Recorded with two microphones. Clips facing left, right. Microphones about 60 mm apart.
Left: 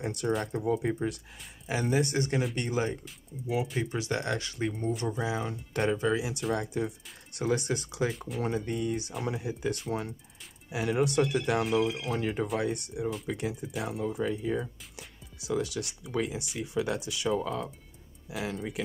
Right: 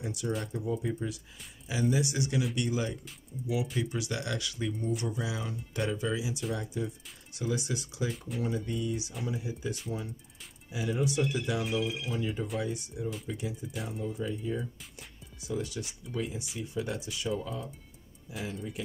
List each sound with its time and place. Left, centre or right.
0.0 s speech: left
5.7 s speech: left
16.1 s speech: left
16.5 s speech: left